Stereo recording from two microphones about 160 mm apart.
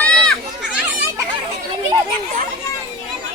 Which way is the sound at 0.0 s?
5° left (ahead or behind).